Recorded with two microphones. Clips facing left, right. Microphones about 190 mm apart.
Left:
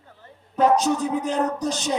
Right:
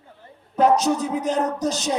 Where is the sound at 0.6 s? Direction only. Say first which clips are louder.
Right 1 dB; 40° right (ahead or behind).